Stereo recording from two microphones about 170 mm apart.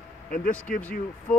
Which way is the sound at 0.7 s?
60° left (ahead or behind).